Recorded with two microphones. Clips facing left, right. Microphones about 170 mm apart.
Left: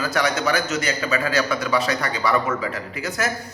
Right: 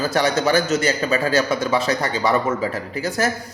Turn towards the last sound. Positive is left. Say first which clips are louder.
# right 4 dB
turn(degrees=-30)  # may be behind; listen again after turning